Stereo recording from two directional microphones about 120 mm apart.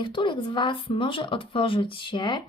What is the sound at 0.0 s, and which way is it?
Speech, 45° left (ahead or behind).